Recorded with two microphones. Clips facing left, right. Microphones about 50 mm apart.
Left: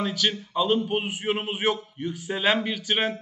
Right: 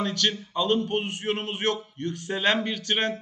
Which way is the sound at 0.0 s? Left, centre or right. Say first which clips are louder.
Even; centre.